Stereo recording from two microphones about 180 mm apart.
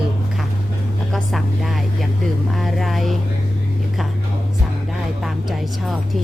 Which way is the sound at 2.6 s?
Centre (ahead or behind).